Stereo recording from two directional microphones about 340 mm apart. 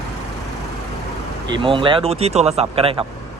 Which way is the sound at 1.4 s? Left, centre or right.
Centre.